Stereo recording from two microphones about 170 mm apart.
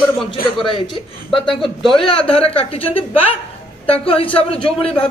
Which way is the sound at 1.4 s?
Centre (ahead or behind).